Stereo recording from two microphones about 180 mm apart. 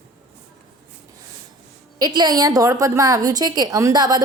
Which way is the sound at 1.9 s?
25° right (ahead or behind).